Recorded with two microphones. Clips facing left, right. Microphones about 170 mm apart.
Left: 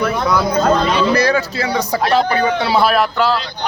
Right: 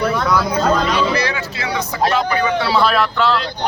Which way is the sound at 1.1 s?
40° left (ahead or behind).